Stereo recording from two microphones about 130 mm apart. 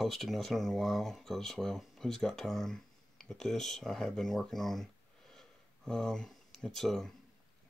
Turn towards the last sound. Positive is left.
turn(degrees=5)  # may be behind; listen again after turning